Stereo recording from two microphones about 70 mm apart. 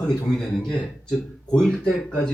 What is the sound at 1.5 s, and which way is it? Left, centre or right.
Speech, centre.